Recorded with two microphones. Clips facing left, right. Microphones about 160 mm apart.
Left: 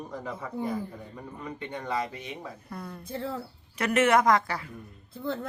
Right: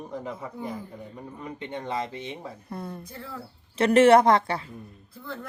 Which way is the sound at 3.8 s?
30° right (ahead or behind).